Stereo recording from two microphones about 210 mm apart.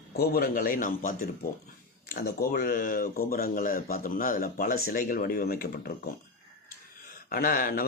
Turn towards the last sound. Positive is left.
turn(degrees=40)  # may be behind; listen again after turning